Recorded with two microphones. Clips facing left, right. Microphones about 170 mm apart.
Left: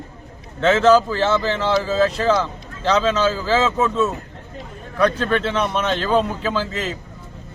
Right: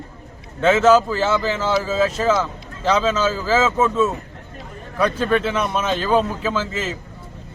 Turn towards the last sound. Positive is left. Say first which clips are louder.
# even
turn(degrees=-5)  # may be behind; listen again after turning